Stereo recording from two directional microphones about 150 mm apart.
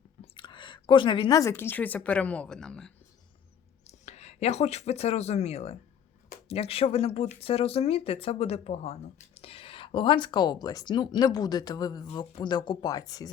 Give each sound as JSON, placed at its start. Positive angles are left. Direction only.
{"t": 0.3, "sound": "a sound", "side_deg": 35}
{"t": 1.4, "sound": "a woman's voice", "side_deg": 15}
{"t": 3.8, "sound": "speech", "side_deg": 45}